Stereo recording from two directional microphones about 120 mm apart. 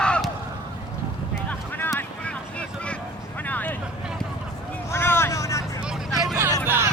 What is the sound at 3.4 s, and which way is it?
Vehicle, 15° left (ahead or behind).